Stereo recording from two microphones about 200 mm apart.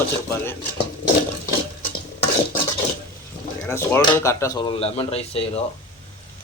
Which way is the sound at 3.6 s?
15° left (ahead or behind).